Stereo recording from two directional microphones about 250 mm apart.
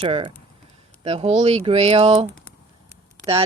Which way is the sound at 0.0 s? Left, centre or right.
Right.